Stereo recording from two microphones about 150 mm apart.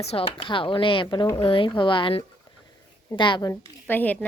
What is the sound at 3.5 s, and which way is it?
Speech, 15° left (ahead or behind).